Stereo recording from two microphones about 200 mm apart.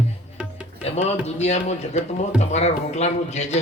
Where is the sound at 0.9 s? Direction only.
30° left (ahead or behind).